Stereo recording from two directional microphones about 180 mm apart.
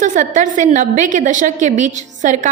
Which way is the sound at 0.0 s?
45° right (ahead or behind).